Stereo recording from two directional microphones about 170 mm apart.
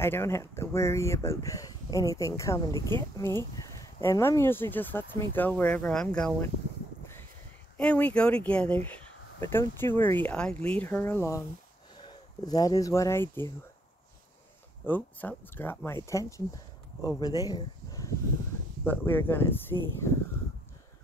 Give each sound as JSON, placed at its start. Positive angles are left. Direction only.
{"t": 0.0, "sound": "speech", "side_deg": 15}
{"t": 7.7, "sound": "speech", "side_deg": 10}
{"t": 14.9, "sound": "speech", "side_deg": 10}
{"t": 18.9, "sound": "speech", "side_deg": 10}